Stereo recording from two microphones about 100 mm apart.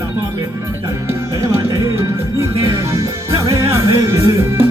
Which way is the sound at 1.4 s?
30° right (ahead or behind).